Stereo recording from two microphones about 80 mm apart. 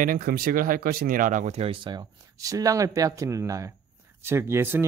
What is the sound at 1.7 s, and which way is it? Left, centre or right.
Speech, right.